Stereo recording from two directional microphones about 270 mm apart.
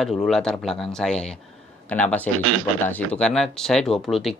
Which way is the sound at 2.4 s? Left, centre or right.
Right.